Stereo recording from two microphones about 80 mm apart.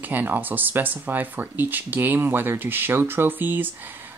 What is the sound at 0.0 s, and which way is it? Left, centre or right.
Speech, right.